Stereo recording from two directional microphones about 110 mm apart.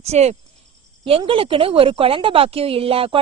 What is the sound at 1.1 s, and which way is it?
Speech, 55° right (ahead or behind).